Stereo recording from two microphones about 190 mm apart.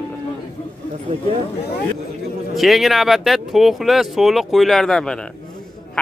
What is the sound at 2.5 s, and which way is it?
Speech, centre (ahead or behind).